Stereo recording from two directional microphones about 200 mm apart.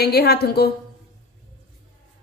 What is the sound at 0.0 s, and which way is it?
Speech, 55° left (ahead or behind).